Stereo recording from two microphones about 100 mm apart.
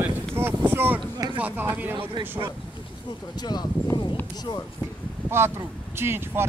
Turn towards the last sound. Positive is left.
turn(degrees=-25)  # may be behind; listen again after turning